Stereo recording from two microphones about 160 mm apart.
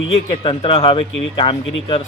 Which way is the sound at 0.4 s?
35° left (ahead or behind).